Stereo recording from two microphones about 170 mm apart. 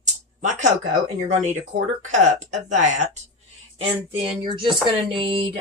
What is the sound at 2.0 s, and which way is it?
Speech, 45° right (ahead or behind).